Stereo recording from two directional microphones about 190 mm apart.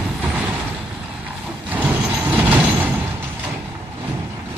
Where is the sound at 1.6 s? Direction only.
10° right (ahead or behind).